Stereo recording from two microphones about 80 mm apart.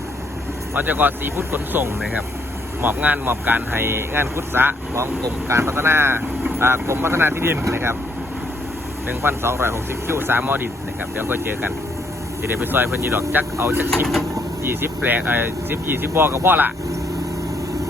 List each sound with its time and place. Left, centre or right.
0.7 s speech: right
9.0 s speech: right